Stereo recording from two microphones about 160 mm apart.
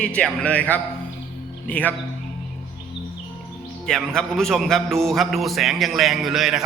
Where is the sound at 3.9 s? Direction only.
5° left (ahead or behind).